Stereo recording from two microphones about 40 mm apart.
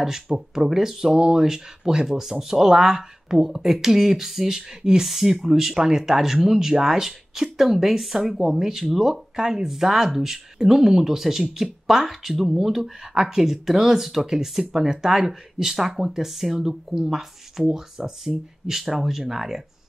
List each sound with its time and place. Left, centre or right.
0.0 s speech: centre
1.1 s speech: right